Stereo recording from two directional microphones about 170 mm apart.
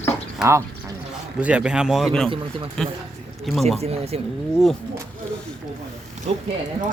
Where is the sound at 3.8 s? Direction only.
35° right (ahead or behind).